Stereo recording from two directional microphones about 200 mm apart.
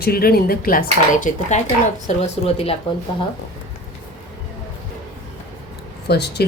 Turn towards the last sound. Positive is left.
turn(degrees=55)  # may be behind; listen again after turning